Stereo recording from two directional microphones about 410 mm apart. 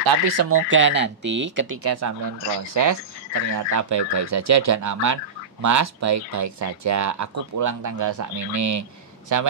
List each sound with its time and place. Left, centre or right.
0.4 s speech: right